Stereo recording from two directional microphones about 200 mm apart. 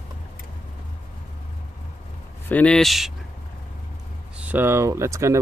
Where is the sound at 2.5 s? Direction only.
5° left (ahead or behind).